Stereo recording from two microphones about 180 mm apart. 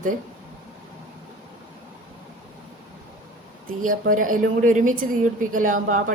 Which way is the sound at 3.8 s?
45° right (ahead or behind).